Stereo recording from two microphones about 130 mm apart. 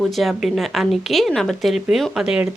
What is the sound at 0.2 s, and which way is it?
A woman's voice, centre (ahead or behind).